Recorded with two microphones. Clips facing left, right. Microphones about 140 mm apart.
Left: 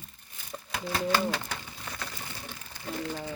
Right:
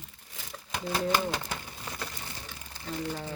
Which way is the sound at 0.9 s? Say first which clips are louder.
Left 1 dB; 15° right (ahead or behind).